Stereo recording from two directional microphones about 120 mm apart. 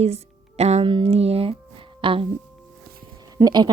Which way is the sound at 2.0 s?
45° right (ahead or behind).